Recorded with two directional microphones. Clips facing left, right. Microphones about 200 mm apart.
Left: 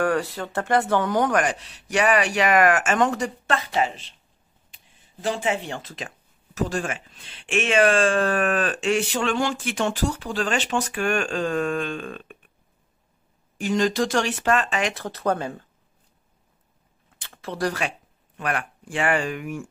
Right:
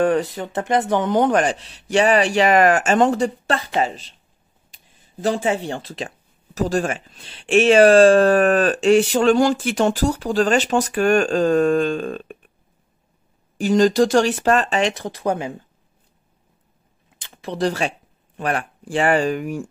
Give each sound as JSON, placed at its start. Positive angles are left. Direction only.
{"t": 0.0, "sound": "speech", "side_deg": -20}
{"t": 13.6, "sound": "speech", "side_deg": -35}
{"t": 15.0, "sound": "speech", "side_deg": -15}
{"t": 17.2, "sound": "speech", "side_deg": -15}